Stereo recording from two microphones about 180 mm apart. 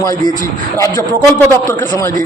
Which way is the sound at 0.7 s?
15° left (ahead or behind).